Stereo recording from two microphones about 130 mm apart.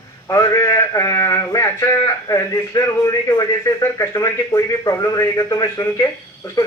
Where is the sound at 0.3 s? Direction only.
25° left (ahead or behind).